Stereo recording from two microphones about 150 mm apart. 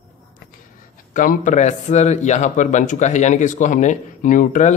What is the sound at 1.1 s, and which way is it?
Speech, 55° left (ahead or behind).